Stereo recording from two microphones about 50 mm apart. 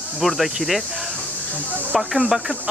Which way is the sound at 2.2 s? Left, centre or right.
Centre.